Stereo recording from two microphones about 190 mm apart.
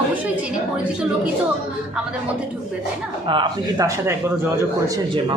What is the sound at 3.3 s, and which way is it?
Speech, 25° right (ahead or behind).